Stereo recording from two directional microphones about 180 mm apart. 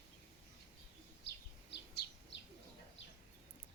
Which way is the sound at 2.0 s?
60° left (ahead or behind).